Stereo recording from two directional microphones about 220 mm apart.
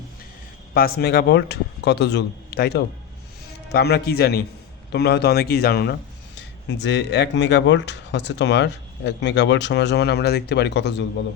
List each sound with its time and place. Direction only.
0.7 s speech: 45° left (ahead or behind)